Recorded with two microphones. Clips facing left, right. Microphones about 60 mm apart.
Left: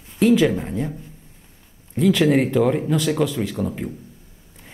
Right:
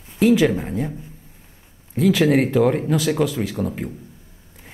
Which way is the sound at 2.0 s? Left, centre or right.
Centre.